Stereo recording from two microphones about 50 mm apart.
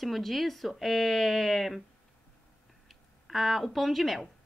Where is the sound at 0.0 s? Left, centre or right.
Centre.